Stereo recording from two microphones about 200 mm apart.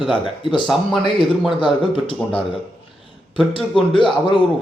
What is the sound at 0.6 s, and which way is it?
Speech, centre (ahead or behind).